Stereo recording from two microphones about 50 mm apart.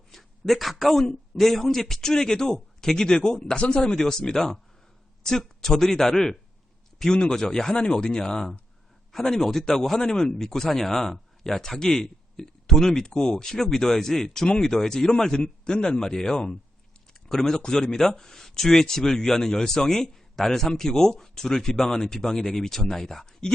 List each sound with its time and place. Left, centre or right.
0.1 s a sound: centre
1.4 s speech: centre; by 3.9 s left
3.9 s speech: centre